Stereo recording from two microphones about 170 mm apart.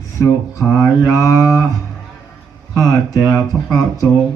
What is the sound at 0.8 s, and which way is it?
Mantra, 15° left (ahead or behind).